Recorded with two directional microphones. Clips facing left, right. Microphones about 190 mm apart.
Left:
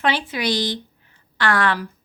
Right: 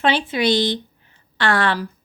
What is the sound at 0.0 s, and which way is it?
Speech, 25° right (ahead or behind).